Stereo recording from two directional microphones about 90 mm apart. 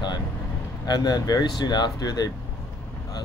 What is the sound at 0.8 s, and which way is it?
Speech, 50° left (ahead or behind).